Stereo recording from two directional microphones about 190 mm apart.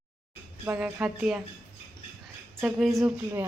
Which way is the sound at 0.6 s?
5° right (ahead or behind).